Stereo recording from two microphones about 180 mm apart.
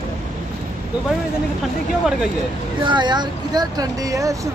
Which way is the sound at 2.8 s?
25° right (ahead or behind).